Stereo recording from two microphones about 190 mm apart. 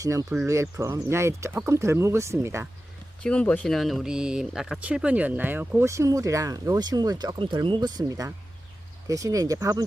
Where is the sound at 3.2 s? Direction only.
5° left (ahead or behind).